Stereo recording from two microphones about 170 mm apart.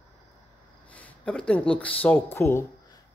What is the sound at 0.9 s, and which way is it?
Speech, 10° left (ahead or behind).